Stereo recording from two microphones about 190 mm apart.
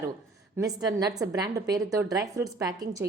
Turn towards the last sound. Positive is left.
turn(degrees=-20)  # may be behind; listen again after turning